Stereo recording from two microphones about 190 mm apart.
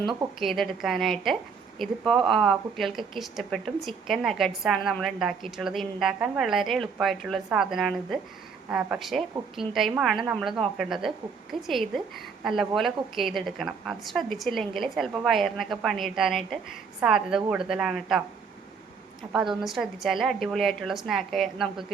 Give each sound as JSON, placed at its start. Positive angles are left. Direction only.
{"t": 0.0, "sound": "a woman's voice", "side_deg": -25}
{"t": 0.3, "sound": "a woman's voice", "side_deg": 0}
{"t": 19.3, "sound": "a woman's voice", "side_deg": 0}